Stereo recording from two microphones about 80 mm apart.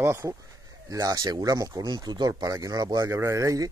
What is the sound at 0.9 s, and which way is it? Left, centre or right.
Speech, right.